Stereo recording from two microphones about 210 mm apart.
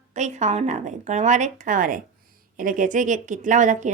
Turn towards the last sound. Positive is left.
turn(degrees=-35)  # may be behind; listen again after turning